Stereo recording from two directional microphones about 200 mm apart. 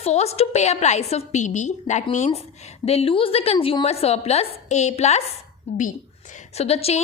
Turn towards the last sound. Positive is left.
turn(degrees=30)  # may be behind; listen again after turning